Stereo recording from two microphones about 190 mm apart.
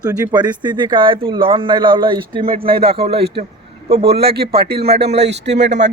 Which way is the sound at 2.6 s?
55° right (ahead or behind).